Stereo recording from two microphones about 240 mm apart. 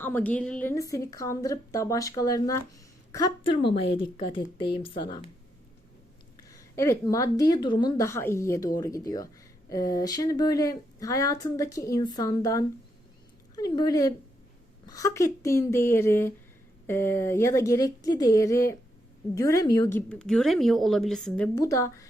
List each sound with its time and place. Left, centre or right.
0.0 s a woman's voice: centre
6.5 s a woman's voice: centre